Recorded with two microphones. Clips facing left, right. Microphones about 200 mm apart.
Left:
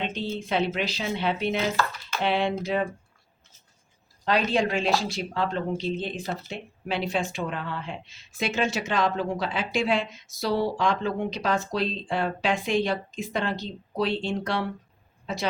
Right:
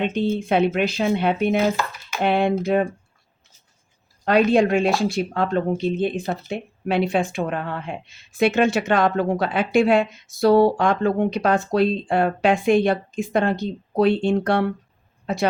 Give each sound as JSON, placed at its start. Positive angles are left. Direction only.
{"t": 0.0, "sound": "speech", "side_deg": -55}
{"t": 4.3, "sound": "speech", "side_deg": -50}